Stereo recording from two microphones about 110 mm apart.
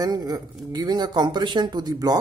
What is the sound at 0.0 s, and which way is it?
Speech, 35° right (ahead or behind).